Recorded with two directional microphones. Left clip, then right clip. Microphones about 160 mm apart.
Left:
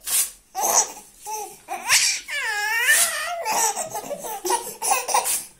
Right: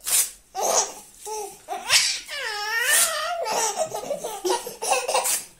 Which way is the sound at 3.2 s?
10° right (ahead or behind).